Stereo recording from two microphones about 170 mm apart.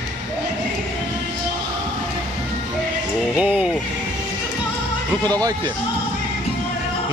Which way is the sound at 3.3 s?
5° right (ahead or behind).